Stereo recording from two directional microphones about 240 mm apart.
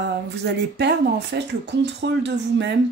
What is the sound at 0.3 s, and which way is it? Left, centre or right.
Speech, right.